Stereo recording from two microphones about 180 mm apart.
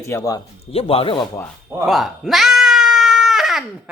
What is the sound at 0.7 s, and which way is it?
Speech, 30° left (ahead or behind).